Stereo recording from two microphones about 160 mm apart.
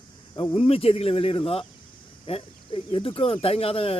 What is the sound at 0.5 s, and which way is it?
Speech, 35° left (ahead or behind).